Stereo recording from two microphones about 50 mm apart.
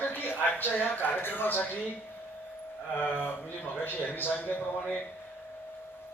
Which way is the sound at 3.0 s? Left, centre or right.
Left.